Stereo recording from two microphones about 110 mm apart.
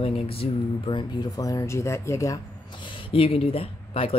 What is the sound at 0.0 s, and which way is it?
Speech, 60° left (ahead or behind).